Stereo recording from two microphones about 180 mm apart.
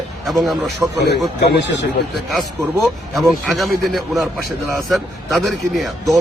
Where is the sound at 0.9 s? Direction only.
70° left (ahead or behind).